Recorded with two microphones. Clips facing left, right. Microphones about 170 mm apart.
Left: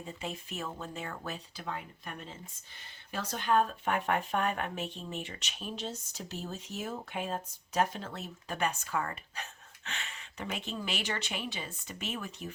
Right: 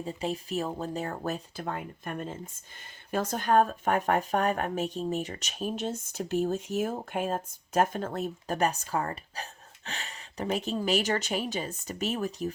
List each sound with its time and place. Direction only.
0.0 s speech: 35° right (ahead or behind)